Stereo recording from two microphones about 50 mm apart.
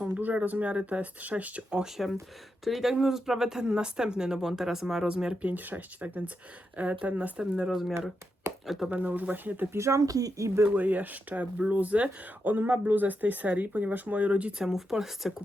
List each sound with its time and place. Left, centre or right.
0.3 s speech: right
2.0 s speech: centre
5.4 s speech: right
7.7 s speech: centre
8.9 s speech: right
9.7 s speech: right
10.8 s speech: right
14.6 s speech: centre